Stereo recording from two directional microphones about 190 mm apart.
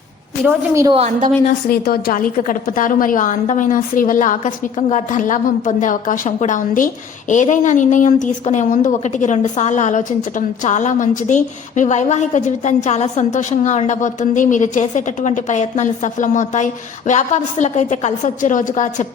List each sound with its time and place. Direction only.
0.4 s a woman's voice: 15° right (ahead or behind)
0.9 s a woman's voice: 35° right (ahead or behind)
1.6 s a woman's voice: 55° left (ahead or behind)